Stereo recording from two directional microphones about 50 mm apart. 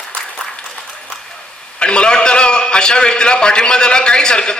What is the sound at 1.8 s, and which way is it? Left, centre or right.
A man's voice, centre.